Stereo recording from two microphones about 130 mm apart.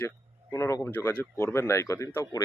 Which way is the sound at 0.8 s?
15° left (ahead or behind).